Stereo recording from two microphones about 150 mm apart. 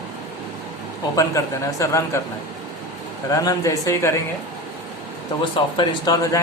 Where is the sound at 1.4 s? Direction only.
25° left (ahead or behind).